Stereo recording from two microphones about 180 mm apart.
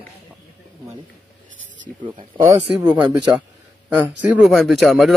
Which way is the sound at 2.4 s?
20° right (ahead or behind).